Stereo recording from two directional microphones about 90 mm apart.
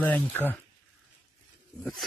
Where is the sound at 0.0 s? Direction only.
20° left (ahead or behind).